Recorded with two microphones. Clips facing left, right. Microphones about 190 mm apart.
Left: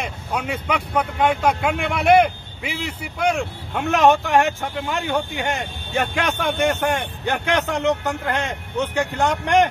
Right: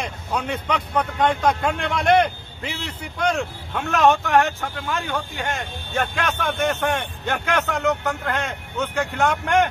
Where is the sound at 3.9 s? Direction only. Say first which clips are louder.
Left 1 dB; 15° left (ahead or behind).